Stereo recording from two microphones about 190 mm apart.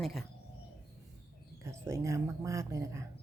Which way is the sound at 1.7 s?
15° right (ahead or behind).